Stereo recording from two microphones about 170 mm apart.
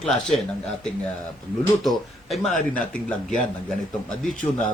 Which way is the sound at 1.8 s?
Centre (ahead or behind).